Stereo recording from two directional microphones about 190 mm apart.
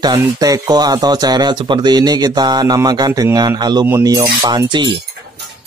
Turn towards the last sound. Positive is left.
turn(degrees=-25)  # may be behind; listen again after turning